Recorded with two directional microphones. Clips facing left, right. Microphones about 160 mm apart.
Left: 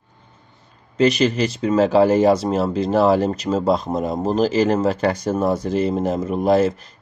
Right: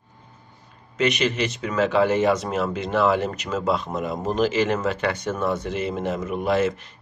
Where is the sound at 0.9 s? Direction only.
35° left (ahead or behind).